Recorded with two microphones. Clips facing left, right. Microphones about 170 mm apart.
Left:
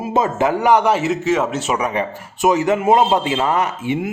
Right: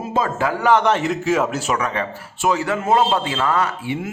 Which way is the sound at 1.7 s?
15° left (ahead or behind).